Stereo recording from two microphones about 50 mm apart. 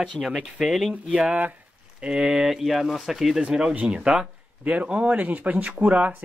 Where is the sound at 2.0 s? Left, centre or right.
Centre.